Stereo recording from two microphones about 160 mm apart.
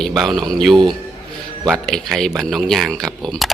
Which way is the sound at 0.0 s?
Centre (ahead or behind).